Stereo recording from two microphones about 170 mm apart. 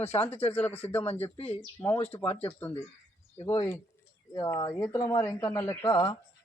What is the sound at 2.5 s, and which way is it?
Speech, 10° left (ahead or behind).